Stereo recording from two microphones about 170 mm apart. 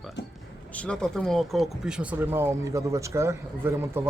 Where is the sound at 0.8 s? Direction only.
5° left (ahead or behind).